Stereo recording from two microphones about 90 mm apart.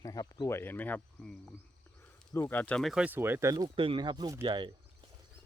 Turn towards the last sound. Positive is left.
turn(degrees=-60)  # may be behind; listen again after turning